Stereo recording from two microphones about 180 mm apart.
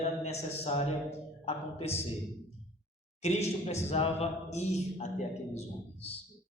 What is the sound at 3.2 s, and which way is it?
A man's voice, 35° left (ahead or behind).